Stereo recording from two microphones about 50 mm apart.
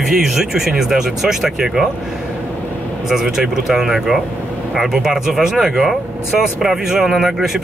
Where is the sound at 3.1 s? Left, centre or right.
Centre.